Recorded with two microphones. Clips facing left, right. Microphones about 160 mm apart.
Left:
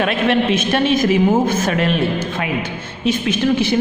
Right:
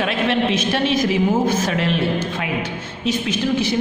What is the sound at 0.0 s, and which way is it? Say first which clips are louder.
A man's voice: left 3 dB; 55° left (ahead or behind).